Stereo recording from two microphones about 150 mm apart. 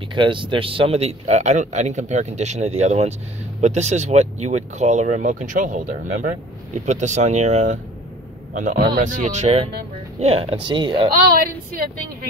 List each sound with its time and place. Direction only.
0.1 s speech: 35° right (ahead or behind); by 7.8 s 50° right (ahead or behind)
8.5 s speech: 70° right (ahead or behind); by 11.1 s 30° right (ahead or behind)